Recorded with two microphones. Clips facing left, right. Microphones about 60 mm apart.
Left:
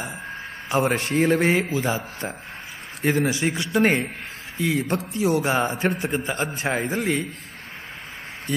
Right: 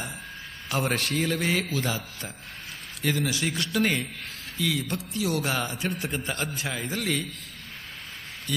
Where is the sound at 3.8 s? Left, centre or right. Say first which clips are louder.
Left 7 dB; left.